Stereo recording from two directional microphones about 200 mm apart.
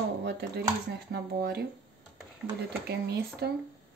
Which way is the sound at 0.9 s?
55° right (ahead or behind).